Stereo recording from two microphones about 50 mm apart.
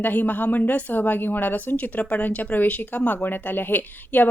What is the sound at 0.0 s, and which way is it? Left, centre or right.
Speech, left.